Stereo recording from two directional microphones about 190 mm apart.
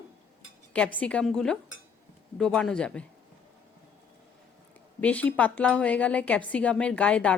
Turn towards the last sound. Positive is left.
turn(degrees=5)  # may be behind; listen again after turning